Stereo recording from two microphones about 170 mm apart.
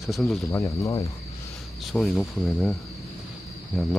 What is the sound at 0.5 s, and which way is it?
Speech, 20° left (ahead or behind).